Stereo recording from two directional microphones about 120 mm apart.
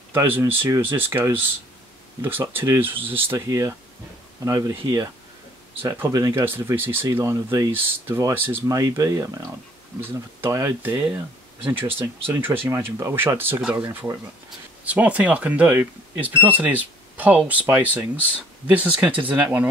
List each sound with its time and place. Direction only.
0.1 s speech: 20° right (ahead or behind)
3.3 s speech: 25° right (ahead or behind)